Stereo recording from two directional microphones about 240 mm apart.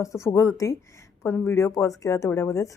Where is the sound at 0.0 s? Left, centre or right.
Centre.